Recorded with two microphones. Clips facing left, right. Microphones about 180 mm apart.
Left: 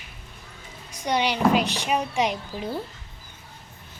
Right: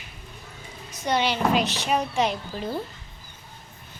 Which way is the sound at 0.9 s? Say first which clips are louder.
Even; 15° left (ahead or behind).